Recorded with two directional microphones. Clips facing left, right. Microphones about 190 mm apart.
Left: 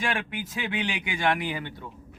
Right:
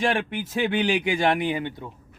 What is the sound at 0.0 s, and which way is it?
Speech, 30° right (ahead or behind).